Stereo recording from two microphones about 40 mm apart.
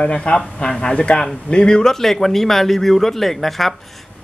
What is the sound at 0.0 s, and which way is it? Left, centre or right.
A man's voice, left.